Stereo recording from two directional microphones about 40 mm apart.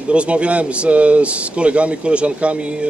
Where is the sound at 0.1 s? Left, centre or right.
Right.